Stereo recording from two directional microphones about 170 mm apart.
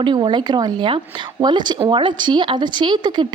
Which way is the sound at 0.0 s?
25° right (ahead or behind).